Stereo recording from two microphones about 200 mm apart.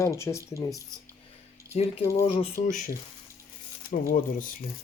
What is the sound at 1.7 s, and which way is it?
Speech, 30° left (ahead or behind).